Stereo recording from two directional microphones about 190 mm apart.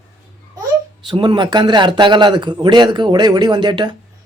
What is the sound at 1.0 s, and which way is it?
A man's voice, 25° right (ahead or behind).